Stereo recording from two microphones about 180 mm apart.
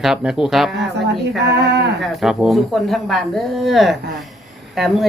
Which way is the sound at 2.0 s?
Centre (ahead or behind).